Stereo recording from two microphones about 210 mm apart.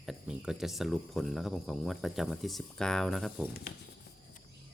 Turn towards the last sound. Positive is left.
turn(degrees=0)  # may be behind; listen again after turning